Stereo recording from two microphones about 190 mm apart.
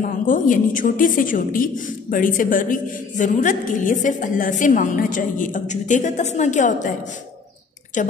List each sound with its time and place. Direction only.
0.3 s a woman's voice: 45° left (ahead or behind)
8.0 s a woman's voice: 40° left (ahead or behind)